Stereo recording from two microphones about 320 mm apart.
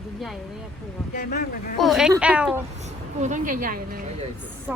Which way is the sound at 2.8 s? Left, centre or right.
Right.